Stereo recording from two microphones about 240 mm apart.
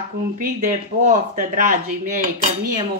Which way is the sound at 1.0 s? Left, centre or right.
Right.